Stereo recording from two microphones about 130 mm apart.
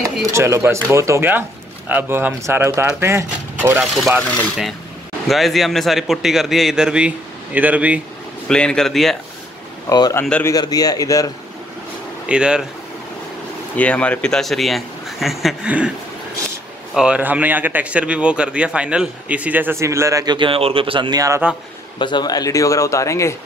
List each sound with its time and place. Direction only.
0.0 s speech: 20° right (ahead or behind)
3.8 s a man's voice: centre (ahead or behind)
5.3 s a man's voice: centre (ahead or behind)
8.5 s a man's voice: 5° left (ahead or behind)
9.8 s speech: 30° left (ahead or behind)
12.3 s speech: 5° right (ahead or behind)
13.7 s a man's voice: 10° left (ahead or behind); by 15.9 s 10° right (ahead or behind)
16.9 s speech: 5° right (ahead or behind); by 20.3 s 25° right (ahead or behind)
20.3 s speech: 45° right (ahead or behind); by 21.4 s 30° right (ahead or behind)
21.9 s speech: 35° left (ahead or behind)